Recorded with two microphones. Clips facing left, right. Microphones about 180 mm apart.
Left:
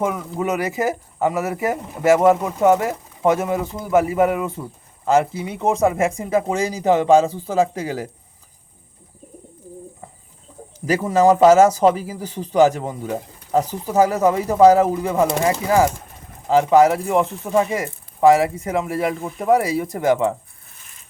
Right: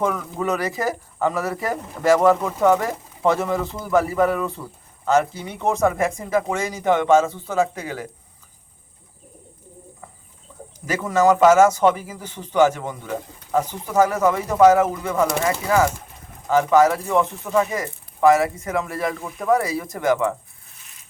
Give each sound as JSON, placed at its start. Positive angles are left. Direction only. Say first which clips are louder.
{"t": 0.0, "sound": "speech", "louder": "left 1 dB", "side_deg": 15}
{"t": 5.0, "sound": "a man's voice", "louder": "left 2 dB", "side_deg": 30}
{"t": 10.8, "sound": "a man's voice", "louder": "left 3 dB", "side_deg": 30}